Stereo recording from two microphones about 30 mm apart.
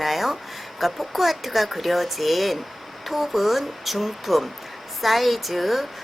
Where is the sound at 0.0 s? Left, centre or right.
Centre.